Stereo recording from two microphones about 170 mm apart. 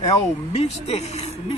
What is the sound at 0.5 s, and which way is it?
A man's voice, 40° left (ahead or behind).